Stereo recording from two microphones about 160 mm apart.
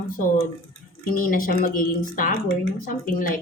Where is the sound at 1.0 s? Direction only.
60° left (ahead or behind).